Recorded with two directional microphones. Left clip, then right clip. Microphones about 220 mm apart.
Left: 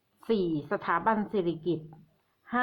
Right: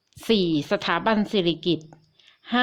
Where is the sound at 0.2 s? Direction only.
35° right (ahead or behind).